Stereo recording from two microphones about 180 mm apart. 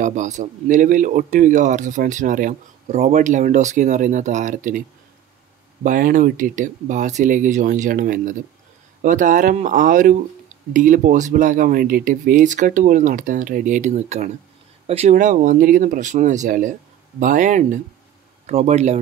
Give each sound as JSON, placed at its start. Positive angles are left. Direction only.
{"t": 0.0, "sound": "speech", "side_deg": -45}
{"t": 5.9, "sound": "speech", "side_deg": -50}